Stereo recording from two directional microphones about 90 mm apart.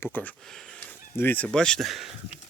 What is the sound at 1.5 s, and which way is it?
Speech, 10° left (ahead or behind).